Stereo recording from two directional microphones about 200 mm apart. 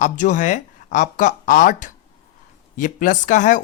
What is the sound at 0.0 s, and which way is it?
A man's voice, 40° left (ahead or behind).